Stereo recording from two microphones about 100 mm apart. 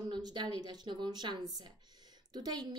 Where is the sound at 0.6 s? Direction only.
45° right (ahead or behind).